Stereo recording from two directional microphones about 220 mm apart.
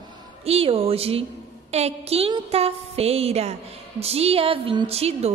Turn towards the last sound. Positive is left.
turn(degrees=-30)  # may be behind; listen again after turning